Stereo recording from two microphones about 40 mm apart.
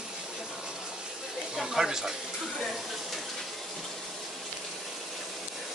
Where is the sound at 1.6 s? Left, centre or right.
Centre.